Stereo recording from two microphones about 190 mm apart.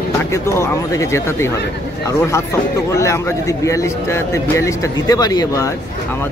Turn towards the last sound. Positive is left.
turn(degrees=20)  # may be behind; listen again after turning